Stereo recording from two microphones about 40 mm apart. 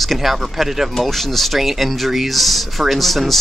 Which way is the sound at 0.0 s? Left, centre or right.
Centre.